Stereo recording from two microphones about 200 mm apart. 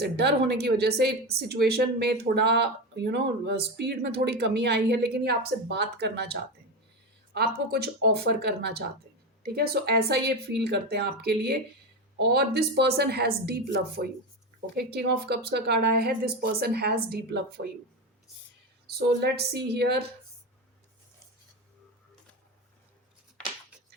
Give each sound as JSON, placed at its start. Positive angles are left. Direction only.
{"t": 0.0, "sound": "speech", "side_deg": -55}
{"t": 18.9, "sound": "speech", "side_deg": -50}